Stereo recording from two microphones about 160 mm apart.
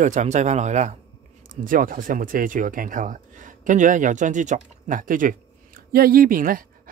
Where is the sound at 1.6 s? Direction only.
60° right (ahead or behind).